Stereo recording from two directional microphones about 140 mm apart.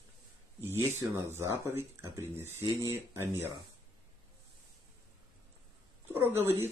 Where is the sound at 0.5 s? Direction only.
20° right (ahead or behind).